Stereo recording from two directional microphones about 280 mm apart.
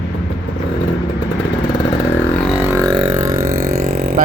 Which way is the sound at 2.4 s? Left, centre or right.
Centre.